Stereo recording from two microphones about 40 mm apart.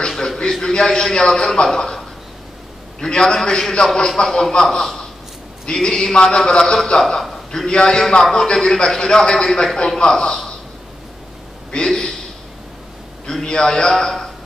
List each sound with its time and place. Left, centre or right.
0.4 s a man's voice: centre
3.0 s a man's voice: centre
11.7 s speech: centre
13.3 s a man's voice: centre